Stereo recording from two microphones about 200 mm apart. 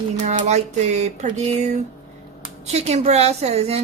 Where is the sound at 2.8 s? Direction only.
35° right (ahead or behind).